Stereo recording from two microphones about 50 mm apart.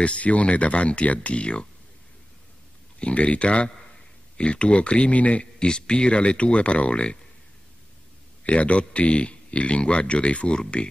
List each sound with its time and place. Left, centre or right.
0.0 s speech: left
3.0 s speech: left
8.5 s speech: left